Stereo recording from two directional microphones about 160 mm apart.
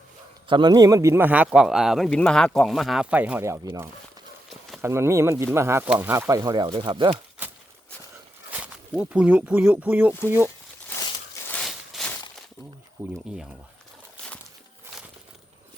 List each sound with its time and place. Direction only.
0.4 s speech: 30° right (ahead or behind)
8.4 s speech: 10° right (ahead or behind)
11.4 s a sound: 10° left (ahead or behind)
13.0 s speech: 15° right (ahead or behind)